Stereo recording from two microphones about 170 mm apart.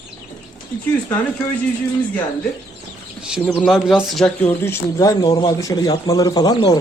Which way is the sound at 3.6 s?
5° right (ahead or behind).